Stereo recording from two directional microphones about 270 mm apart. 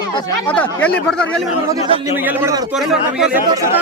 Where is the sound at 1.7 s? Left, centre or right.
Centre.